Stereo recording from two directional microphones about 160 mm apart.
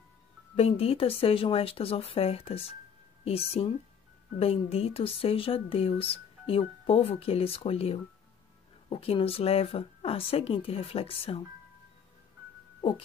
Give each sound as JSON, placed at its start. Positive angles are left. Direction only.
{"t": 0.6, "sound": "speech", "side_deg": 40}